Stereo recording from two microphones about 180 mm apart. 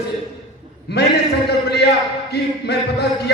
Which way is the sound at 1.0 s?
65° left (ahead or behind).